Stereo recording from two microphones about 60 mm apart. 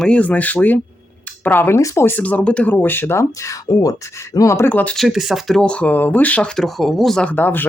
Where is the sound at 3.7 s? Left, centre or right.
Left.